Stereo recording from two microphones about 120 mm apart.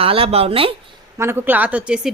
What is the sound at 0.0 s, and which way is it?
Speech, 50° right (ahead or behind).